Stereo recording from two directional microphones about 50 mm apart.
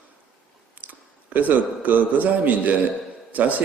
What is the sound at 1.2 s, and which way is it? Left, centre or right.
A man's voice, right.